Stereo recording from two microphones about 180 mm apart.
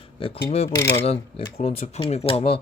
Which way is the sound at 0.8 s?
15° left (ahead or behind).